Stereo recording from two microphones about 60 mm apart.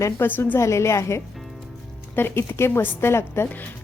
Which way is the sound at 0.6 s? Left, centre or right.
Left.